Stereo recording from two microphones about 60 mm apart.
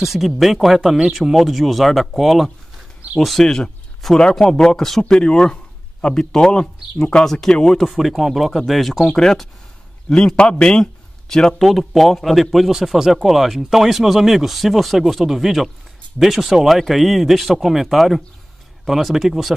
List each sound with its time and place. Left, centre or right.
0.0 s speech: centre
7.8 s a man's voice: centre